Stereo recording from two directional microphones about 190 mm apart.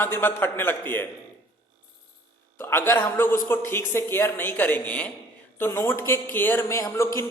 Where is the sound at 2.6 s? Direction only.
10° left (ahead or behind).